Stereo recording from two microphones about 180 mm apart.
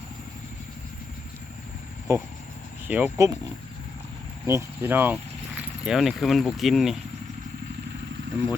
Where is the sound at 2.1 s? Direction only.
15° right (ahead or behind).